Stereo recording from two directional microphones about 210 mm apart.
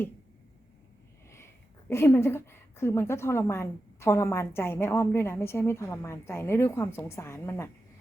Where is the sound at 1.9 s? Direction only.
10° left (ahead or behind).